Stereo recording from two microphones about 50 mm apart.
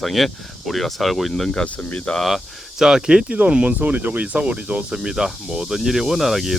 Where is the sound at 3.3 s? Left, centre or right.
Right.